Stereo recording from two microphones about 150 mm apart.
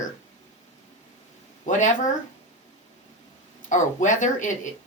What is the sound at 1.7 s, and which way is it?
Speech, 55° left (ahead or behind).